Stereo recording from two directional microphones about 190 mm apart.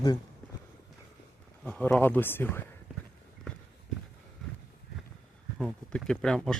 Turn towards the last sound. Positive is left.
turn(degrees=0)  # may be behind; listen again after turning